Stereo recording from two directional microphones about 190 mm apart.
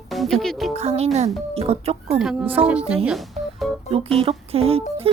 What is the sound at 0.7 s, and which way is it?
Speech, 35° right (ahead or behind).